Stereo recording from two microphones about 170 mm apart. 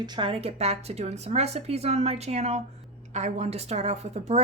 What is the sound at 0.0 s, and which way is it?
Speech, 25° right (ahead or behind).